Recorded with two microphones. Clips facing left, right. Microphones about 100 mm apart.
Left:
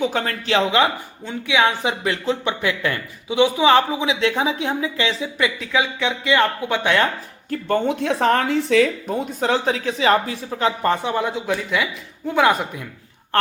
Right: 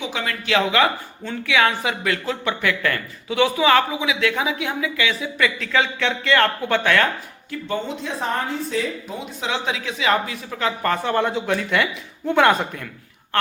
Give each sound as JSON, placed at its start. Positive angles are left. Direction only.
{"t": 0.0, "sound": "speech", "side_deg": 45}
{"t": 5.5, "sound": "speech", "side_deg": 15}
{"t": 7.5, "sound": "speech", "side_deg": 55}
{"t": 9.0, "sound": "a woman's voice", "side_deg": 45}
{"t": 11.1, "sound": "speech", "side_deg": 5}